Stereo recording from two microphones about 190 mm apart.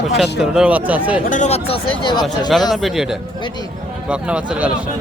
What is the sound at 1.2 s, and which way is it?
Speech, 40° left (ahead or behind).